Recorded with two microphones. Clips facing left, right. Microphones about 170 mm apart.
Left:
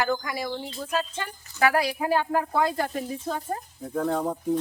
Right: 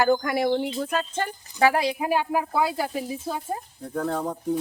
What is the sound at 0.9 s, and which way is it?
Speech, 50° right (ahead or behind).